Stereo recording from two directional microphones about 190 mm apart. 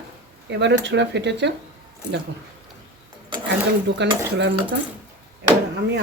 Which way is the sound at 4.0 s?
65° right (ahead or behind).